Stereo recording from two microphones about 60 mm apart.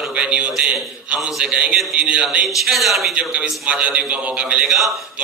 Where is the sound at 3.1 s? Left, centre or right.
Centre.